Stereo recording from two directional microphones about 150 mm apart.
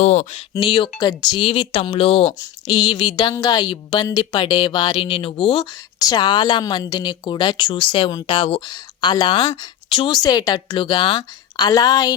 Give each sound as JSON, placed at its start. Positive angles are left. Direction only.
{"t": 0.0, "sound": "speech", "side_deg": 50}
{"t": 0.5, "sound": "speech", "side_deg": 35}